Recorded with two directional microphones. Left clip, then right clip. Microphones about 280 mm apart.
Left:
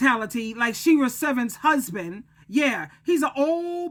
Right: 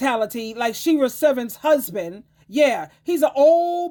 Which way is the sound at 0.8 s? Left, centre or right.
Centre.